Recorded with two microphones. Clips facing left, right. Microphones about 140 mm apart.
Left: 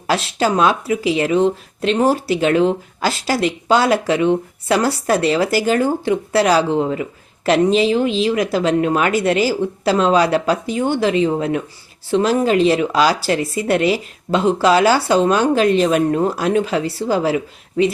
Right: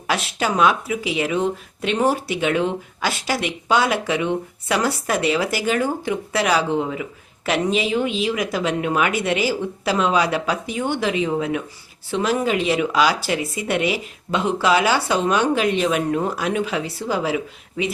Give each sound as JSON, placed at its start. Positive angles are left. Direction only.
{"t": 0.1, "sound": "speech", "side_deg": 35}